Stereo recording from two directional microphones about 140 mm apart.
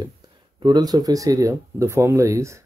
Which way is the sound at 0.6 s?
30° right (ahead or behind).